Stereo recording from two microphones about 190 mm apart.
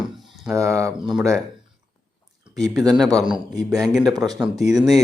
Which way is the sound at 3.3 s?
20° right (ahead or behind).